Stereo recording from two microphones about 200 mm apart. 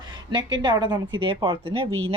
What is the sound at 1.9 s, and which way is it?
Speech, 90° right.